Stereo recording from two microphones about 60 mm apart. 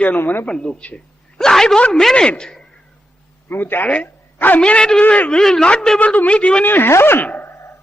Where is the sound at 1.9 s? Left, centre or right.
Centre.